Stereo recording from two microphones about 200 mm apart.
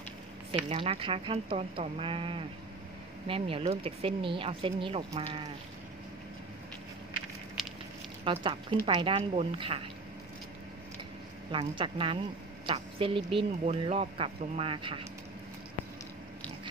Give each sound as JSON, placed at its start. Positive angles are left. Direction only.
{"t": 0.7, "sound": "a woman's voice", "side_deg": -30}
{"t": 8.2, "sound": "a woman's voice", "side_deg": -25}
{"t": 11.5, "sound": "a woman's voice", "side_deg": -25}